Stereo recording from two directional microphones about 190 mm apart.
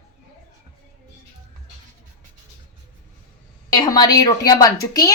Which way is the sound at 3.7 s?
20° left (ahead or behind).